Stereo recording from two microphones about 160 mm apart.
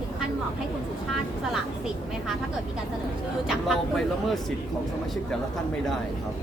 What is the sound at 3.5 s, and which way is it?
Speech, centre (ahead or behind).